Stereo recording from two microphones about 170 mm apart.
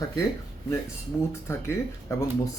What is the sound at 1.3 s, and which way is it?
Speech, 15° left (ahead or behind).